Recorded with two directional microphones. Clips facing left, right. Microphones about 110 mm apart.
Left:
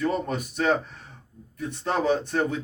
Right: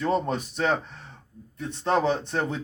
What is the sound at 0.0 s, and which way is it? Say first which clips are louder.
Speech: right 1 dB; 30° right (ahead or behind).